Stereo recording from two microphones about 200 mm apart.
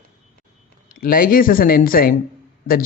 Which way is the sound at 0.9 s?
45° left (ahead or behind).